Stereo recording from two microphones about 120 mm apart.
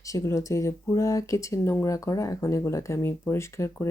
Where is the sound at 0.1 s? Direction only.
25° left (ahead or behind).